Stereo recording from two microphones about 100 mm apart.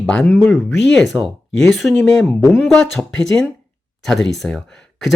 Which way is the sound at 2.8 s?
5° left (ahead or behind).